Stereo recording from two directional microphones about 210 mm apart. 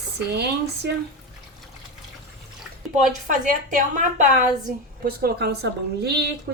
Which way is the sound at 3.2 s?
40° right (ahead or behind).